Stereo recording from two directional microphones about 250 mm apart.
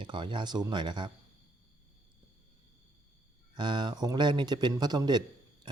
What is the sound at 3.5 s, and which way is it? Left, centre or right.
A man's voice, centre.